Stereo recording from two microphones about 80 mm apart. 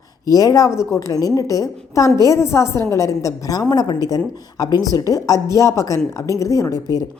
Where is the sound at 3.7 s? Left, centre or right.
Left.